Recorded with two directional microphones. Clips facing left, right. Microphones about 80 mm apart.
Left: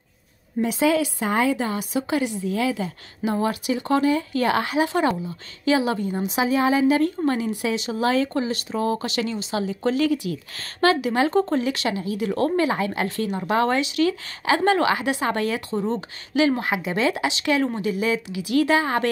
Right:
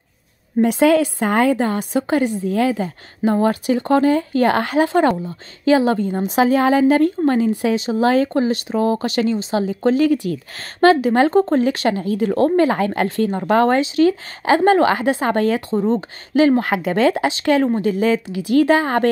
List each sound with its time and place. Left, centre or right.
0.6 s a woman's voice: right
16.6 s a woman's voice: right